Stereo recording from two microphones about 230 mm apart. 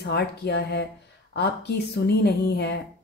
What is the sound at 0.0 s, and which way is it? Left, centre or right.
A woman's voice, left.